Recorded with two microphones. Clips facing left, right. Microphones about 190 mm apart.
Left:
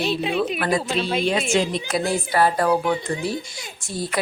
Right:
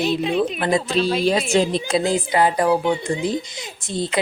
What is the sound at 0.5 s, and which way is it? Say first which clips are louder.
Speech: right 2 dB; 20° right (ahead or behind).